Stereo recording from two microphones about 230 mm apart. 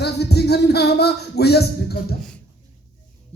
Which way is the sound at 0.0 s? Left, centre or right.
Left.